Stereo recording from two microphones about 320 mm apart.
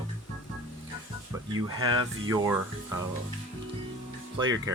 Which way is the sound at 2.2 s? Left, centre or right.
Centre.